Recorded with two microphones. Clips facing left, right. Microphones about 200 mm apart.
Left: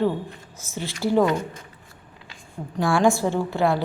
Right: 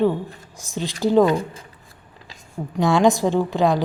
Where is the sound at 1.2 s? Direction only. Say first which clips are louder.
Right 3 dB; 30° right (ahead or behind).